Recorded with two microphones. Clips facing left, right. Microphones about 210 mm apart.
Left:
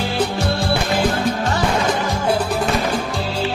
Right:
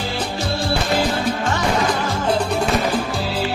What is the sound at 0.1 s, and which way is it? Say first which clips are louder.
Music: left 4 dB; 60° left (ahead or behind).